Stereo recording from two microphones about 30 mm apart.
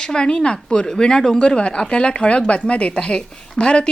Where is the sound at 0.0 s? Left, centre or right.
Left.